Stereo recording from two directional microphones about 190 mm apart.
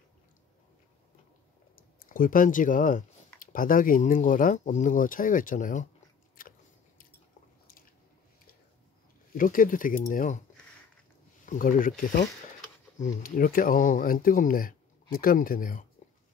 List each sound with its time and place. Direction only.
1.8 s speech: 45° left (ahead or behind)
6.4 s biting: 50° left (ahead or behind)
9.4 s speech: 45° left (ahead or behind)
11.4 s speech: 45° left (ahead or behind)
16.0 s a sound: 40° left (ahead or behind)